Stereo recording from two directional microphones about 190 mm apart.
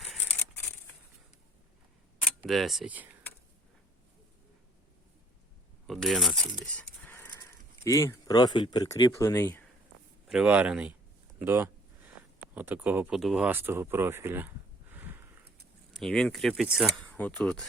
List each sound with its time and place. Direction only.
0.0 s scissors: 5° left (ahead or behind)
2.4 s speech: centre (ahead or behind)
5.9 s speech: centre (ahead or behind)
10.2 s speech: 5° right (ahead or behind)
11.3 s a sound: 10° right (ahead or behind)
12.5 s speech: 10° right (ahead or behind)
15.9 s speech: centre (ahead or behind)